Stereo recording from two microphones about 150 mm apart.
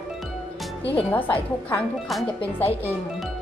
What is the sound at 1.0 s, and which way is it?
Speech, 10° left (ahead or behind).